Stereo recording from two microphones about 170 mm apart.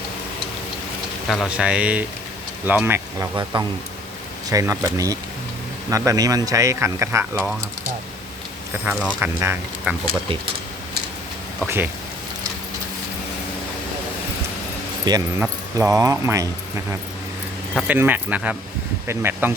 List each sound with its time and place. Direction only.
1.3 s speech: 5° right (ahead or behind)
3.5 s speech: 30° right (ahead or behind)
8.8 s speech: 10° right (ahead or behind)
11.6 s speech: 10° right (ahead or behind)
15.4 s speech: 15° right (ahead or behind)
17.8 s speech: 10° right (ahead or behind)